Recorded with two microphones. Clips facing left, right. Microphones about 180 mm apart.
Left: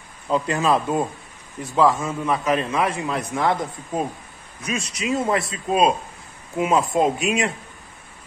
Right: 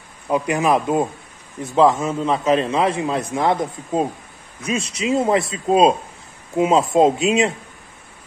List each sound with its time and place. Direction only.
0.3 s a man's voice: 15° right (ahead or behind)